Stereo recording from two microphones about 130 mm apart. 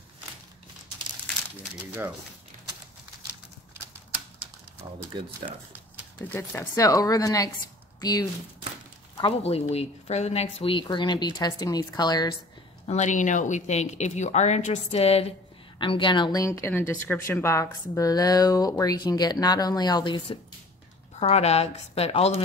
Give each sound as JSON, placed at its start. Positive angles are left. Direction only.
{"t": 6.2, "sound": "speech", "side_deg": 15}
{"t": 6.7, "sound": "speech", "side_deg": 25}
{"t": 9.4, "sound": "speech", "side_deg": 55}
{"t": 12.8, "sound": "speech", "side_deg": 60}
{"t": 15.8, "sound": "speech", "side_deg": 40}
{"t": 21.2, "sound": "a woman's voice", "side_deg": 55}